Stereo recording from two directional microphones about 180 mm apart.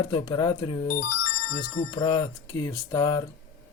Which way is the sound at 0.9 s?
50° left (ahead or behind).